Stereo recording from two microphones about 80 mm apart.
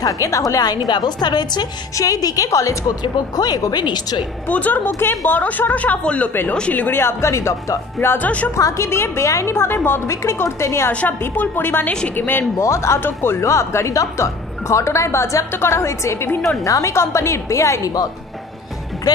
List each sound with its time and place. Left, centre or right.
0.0 s a woman's voice: left
0.8 s a woman's voice: left
2.0 s a woman's voice: left
3.0 s a woman's voice: left
4.5 s a woman's voice: left
10.9 s a woman's voice: centre
12.6 s a woman's voice: left
19.1 s a woman's voice: left